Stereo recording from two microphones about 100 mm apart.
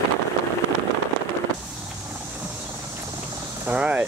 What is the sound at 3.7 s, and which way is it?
Speech, 10° right (ahead or behind).